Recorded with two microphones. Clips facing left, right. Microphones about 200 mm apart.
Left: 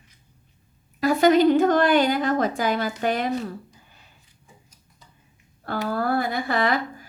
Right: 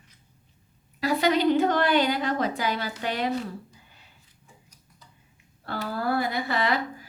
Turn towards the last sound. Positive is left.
turn(degrees=50)  # may be behind; listen again after turning